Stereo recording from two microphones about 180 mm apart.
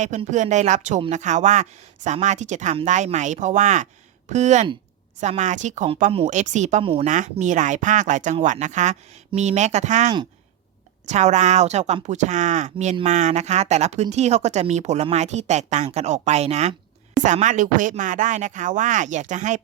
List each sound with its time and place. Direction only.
0.0 s speech: 40° right (ahead or behind)